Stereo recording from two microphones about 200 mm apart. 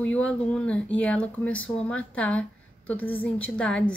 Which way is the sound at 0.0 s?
5° left (ahead or behind).